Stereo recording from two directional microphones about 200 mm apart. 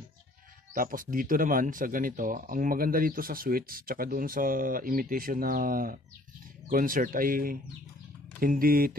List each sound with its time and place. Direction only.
0.7 s speech: 45° right (ahead or behind)